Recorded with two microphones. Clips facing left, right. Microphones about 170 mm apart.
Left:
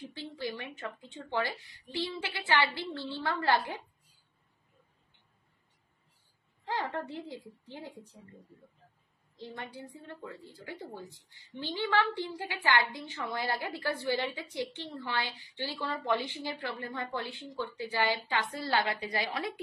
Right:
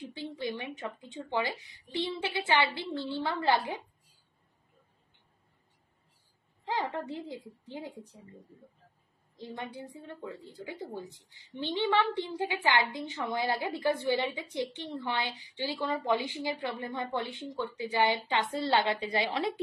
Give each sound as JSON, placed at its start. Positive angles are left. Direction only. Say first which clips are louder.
{"t": 0.1, "sound": "a woman's voice", "louder": "right 3 dB", "side_deg": -20}
{"t": 6.6, "sound": "a woman's voice", "louder": "right 1 dB", "side_deg": -15}
{"t": 9.4, "sound": "a woman's voice", "louder": "right 2 dB", "side_deg": -20}